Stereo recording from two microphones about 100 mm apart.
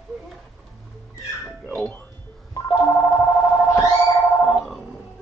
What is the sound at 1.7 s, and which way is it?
Speech, 10° left (ahead or behind).